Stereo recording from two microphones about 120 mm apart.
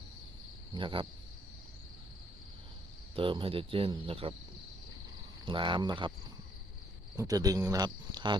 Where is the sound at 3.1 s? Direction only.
45° right (ahead or behind).